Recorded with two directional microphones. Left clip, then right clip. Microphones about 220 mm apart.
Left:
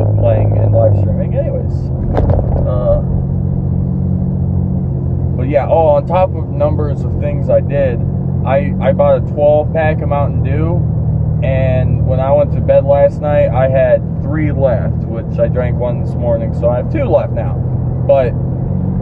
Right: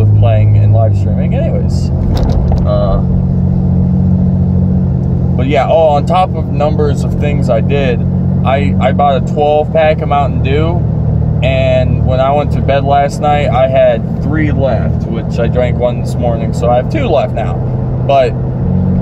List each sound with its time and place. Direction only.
5.5 s speech: 10° right (ahead or behind)
11.6 s speech: 15° right (ahead or behind)
16.6 s speech: 10° right (ahead or behind)